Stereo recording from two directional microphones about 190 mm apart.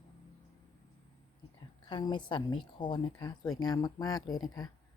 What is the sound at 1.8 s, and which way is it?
Speech, 25° left (ahead or behind).